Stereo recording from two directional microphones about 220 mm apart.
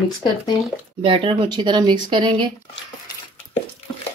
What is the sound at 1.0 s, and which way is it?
Speech, 25° right (ahead or behind).